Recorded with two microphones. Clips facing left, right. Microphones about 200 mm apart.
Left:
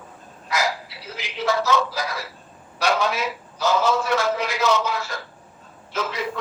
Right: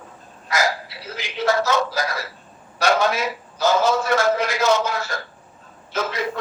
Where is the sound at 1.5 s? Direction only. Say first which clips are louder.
Right 1 dB; 45° right (ahead or behind).